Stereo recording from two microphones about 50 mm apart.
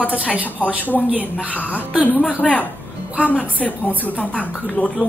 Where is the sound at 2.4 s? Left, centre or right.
Left.